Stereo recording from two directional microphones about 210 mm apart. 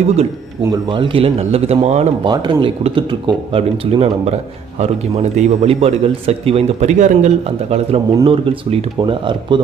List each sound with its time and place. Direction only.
0.7 s speech: 20° right (ahead or behind)